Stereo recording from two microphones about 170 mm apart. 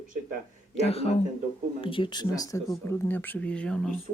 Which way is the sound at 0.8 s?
35° left (ahead or behind).